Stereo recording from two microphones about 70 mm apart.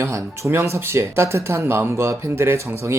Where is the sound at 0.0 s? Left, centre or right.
Right.